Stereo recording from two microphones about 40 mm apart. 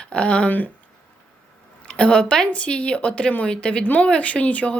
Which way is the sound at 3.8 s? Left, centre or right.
Left.